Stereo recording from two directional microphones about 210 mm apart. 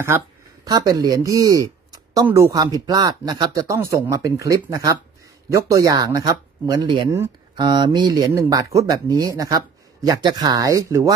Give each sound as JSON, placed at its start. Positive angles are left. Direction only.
{"t": 0.1, "sound": "speech", "side_deg": -10}